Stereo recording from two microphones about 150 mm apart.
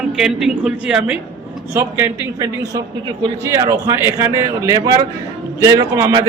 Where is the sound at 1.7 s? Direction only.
20° right (ahead or behind).